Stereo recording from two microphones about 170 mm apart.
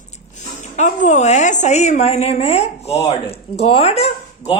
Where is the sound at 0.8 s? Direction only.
45° left (ahead or behind).